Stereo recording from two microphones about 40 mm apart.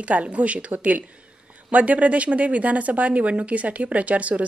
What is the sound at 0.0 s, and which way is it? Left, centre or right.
Speech, right.